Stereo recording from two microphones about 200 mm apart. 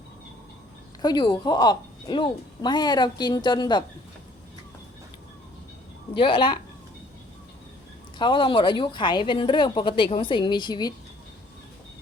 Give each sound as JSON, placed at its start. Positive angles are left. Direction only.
{"t": 1.0, "sound": "a woman's voice", "side_deg": 25}
{"t": 6.1, "sound": "a woman's voice", "side_deg": 25}
{"t": 8.2, "sound": "a woman's voice", "side_deg": 25}